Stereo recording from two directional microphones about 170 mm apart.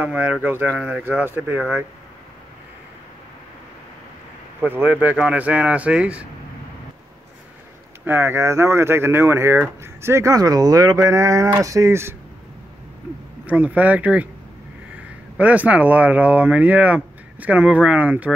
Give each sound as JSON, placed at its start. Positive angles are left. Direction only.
{"t": 0.0, "sound": "speech", "side_deg": -10}
{"t": 4.6, "sound": "speech", "side_deg": -10}
{"t": 8.0, "sound": "speech", "side_deg": -15}
{"t": 13.5, "sound": "speech", "side_deg": -10}
{"t": 15.3, "sound": "speech", "side_deg": -10}